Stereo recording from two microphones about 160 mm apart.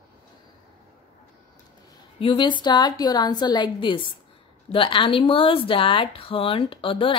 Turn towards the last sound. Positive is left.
turn(degrees=35)  # may be behind; listen again after turning